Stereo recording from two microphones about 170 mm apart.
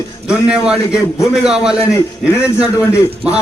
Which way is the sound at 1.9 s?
15° left (ahead or behind).